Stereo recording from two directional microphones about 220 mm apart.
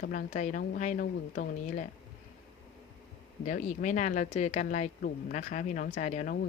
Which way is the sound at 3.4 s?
35° left (ahead or behind).